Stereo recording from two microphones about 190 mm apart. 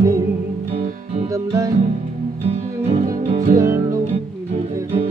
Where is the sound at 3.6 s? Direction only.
15° right (ahead or behind).